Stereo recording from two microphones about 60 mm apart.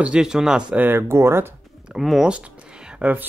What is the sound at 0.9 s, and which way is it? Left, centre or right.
Speech, right.